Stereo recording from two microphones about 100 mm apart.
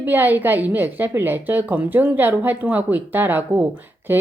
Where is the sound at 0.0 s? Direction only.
20° right (ahead or behind).